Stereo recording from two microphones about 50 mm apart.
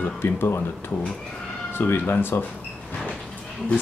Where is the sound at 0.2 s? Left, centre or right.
Left.